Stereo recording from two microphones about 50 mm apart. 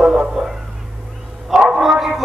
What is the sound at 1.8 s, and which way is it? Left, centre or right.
Music, centre.